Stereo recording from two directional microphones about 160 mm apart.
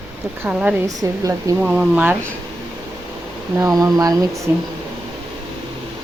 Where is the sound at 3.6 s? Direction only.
20° right (ahead or behind).